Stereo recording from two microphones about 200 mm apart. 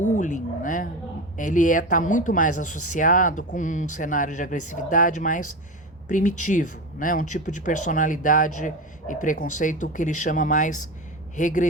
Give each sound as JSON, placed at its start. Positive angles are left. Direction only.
{"t": 0.0, "sound": "speech", "side_deg": 40}